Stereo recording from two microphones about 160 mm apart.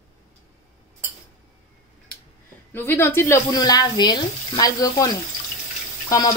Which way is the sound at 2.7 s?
15° left (ahead or behind).